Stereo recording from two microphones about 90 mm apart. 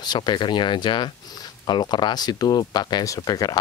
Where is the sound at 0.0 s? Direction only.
50° left (ahead or behind).